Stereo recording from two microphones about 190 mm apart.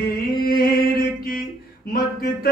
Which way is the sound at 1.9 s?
50° left (ahead or behind).